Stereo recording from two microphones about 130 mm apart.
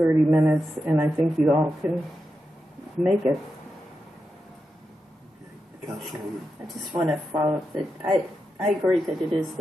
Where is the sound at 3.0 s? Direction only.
5° right (ahead or behind).